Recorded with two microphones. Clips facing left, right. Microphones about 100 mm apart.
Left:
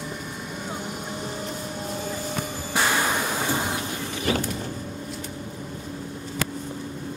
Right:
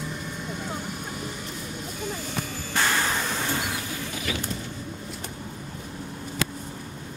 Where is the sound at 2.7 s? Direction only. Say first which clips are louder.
Left 2 dB; 15° left (ahead or behind).